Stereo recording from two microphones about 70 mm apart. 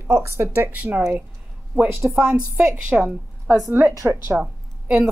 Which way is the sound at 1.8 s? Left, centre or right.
Right.